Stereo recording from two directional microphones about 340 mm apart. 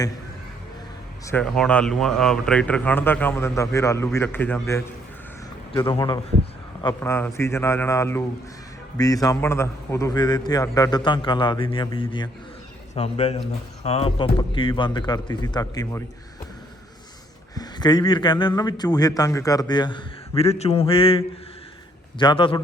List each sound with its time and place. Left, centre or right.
1.2 s speech: centre
17.5 s speech: centre